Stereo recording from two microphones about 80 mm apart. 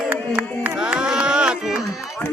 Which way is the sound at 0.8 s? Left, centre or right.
Centre.